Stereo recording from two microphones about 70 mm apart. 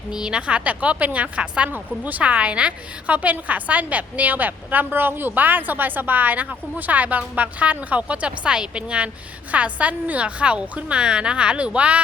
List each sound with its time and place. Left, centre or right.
0.1 s a woman's voice: centre